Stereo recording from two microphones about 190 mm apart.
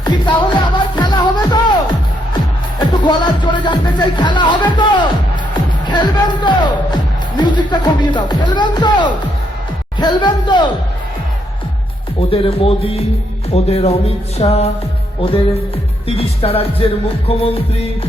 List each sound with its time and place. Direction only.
0.0 s music: 25° left (ahead or behind)
2.7 s speech: 25° left (ahead or behind)
12.3 s speech: 30° left (ahead or behind)